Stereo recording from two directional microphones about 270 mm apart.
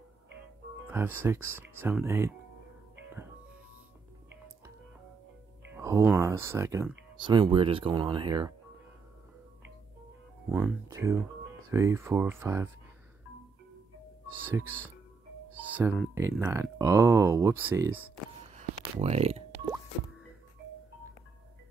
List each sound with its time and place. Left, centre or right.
0.8 s speech: centre
5.7 s speech: centre
10.5 s speech: centre
14.3 s speech: centre
18.4 s a sound: right